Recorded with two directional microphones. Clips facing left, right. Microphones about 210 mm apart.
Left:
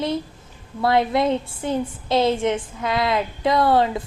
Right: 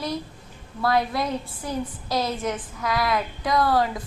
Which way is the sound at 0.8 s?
25° left (ahead or behind).